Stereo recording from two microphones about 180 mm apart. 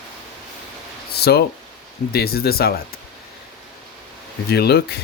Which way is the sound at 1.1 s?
60° left (ahead or behind).